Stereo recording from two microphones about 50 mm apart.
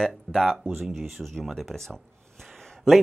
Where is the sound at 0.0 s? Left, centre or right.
Centre.